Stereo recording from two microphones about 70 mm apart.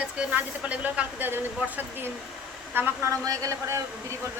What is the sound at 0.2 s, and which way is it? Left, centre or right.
Speech, centre.